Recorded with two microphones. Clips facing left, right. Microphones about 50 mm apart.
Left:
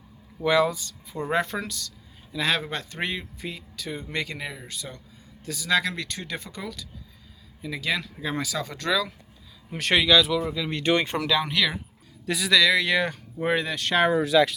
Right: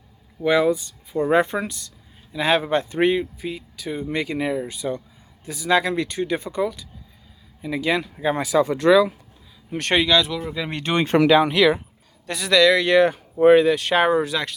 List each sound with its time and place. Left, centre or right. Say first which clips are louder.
0.3 s speech: right 3 dB; centre
9.6 s speech: right 2 dB; centre
10.5 s speech: right 2 dB; centre
11.4 s speech: right 8 dB; centre